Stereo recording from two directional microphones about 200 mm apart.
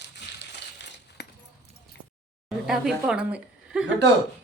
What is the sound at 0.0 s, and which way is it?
Coin, 60° left (ahead or behind).